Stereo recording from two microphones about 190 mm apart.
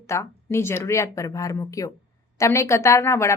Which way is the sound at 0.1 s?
15° left (ahead or behind).